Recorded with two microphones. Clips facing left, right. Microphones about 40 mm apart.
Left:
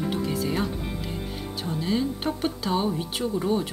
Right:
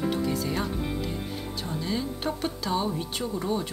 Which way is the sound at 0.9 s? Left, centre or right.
Centre.